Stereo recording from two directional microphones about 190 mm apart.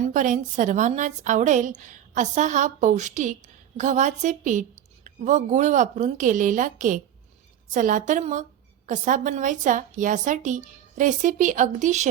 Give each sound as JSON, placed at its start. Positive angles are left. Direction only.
{"t": 0.0, "sound": "a woman's voice", "side_deg": -40}